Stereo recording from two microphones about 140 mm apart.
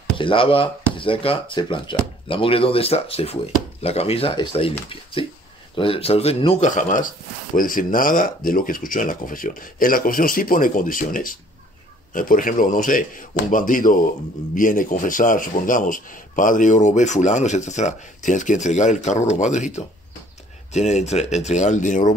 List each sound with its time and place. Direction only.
0.2 s speech: 40° left (ahead or behind)
6.7 s a man's voice: 65° left (ahead or behind)
7.5 s a man's voice: 80° left; by 22.1 s 65° left (ahead or behind)